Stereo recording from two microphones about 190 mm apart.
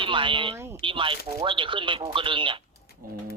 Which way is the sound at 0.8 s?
25° right (ahead or behind).